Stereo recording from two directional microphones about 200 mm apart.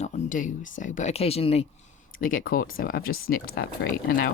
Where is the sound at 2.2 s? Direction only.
45° left (ahead or behind).